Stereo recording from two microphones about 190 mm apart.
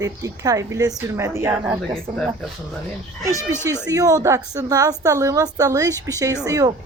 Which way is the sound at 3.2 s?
15° right (ahead or behind).